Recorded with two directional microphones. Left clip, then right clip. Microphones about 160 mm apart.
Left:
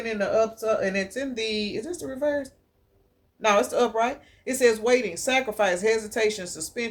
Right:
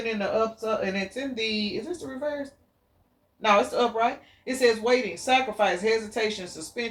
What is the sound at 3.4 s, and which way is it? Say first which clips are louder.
Speech: even; 45° left (ahead or behind).